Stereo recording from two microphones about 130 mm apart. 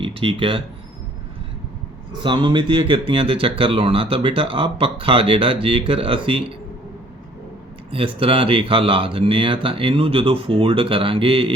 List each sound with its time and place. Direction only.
0.0 s speech: 45° right (ahead or behind)
2.2 s speech: 35° right (ahead or behind)
7.9 s speech: 45° right (ahead or behind)